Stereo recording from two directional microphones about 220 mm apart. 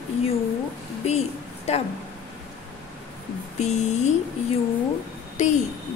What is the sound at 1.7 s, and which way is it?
Speech, 30° left (ahead or behind).